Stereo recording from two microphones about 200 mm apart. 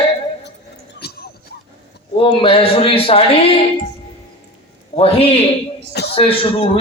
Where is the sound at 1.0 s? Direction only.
50° left (ahead or behind).